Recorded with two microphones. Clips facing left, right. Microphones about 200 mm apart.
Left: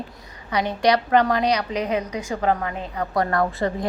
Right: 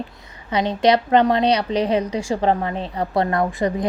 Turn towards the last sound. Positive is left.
turn(degrees=-20)  # may be behind; listen again after turning